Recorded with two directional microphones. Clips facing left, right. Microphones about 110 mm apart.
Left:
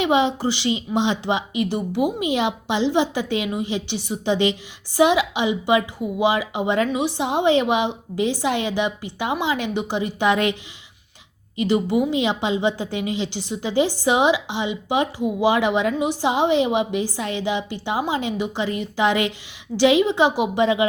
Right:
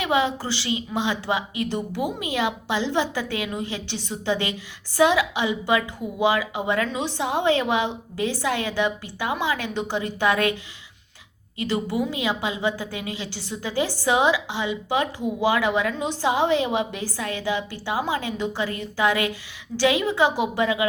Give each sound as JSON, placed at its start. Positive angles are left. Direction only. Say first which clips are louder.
{"t": 0.0, "sound": "a woman's voice", "louder": "left 4 dB", "side_deg": 20}
{"t": 11.5, "sound": "a woman's voice", "louder": "left 5 dB", "side_deg": 15}